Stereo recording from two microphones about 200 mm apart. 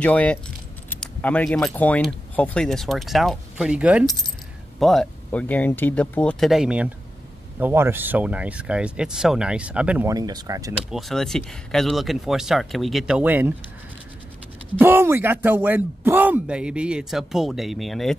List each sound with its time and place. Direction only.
0.0 s speech: 5° left (ahead or behind)
10.1 s speech: 20° right (ahead or behind)
10.9 s speech: centre (ahead or behind)
14.8 s speech: 10° right (ahead or behind)